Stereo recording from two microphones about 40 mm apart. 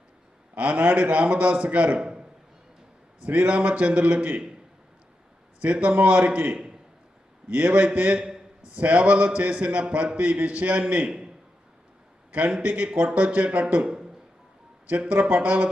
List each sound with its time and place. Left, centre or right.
0.5 s a man's voice: right
2.0 s a sound: centre
3.2 s a man's voice: right
5.6 s a man's voice: right
12.6 s a man's voice: right